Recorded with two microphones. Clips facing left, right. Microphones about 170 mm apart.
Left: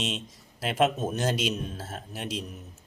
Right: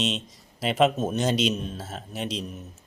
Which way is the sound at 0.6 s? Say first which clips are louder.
Right 3 dB; centre (ahead or behind).